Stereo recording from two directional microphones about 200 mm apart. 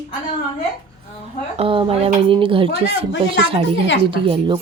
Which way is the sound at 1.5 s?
25° right (ahead or behind).